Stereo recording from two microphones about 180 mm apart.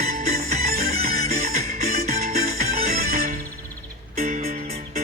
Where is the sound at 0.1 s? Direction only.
40° right (ahead or behind).